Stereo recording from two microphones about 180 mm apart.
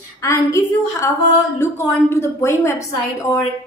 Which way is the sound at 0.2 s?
20° left (ahead or behind).